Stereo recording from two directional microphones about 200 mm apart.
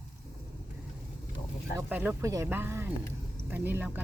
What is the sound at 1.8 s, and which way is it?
Speech, 10° right (ahead or behind).